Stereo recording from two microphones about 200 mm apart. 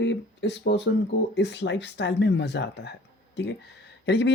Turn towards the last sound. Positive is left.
turn(degrees=55)  # may be behind; listen again after turning